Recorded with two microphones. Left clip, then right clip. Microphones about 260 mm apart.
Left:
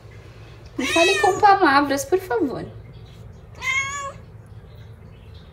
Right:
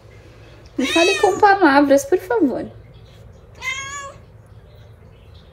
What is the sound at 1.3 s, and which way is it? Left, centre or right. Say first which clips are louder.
A woman's voice: right 3 dB; right.